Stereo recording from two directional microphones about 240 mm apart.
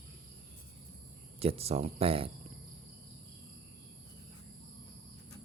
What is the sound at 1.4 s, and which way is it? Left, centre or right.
Speech, right.